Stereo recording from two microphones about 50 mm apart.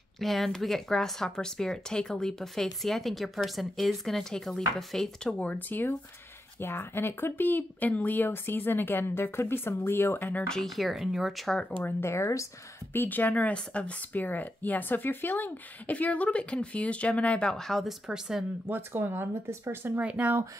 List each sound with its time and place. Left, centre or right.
0.2 s speech: centre
5.4 s speech: left
8.3 s speech: left
10.5 s speech: centre
12.0 s speech: left
12.9 s speech: left
14.2 s speech: left
17.5 s speech: centre
17.8 s speech: centre
18.7 s speech: right
20.0 s speech: right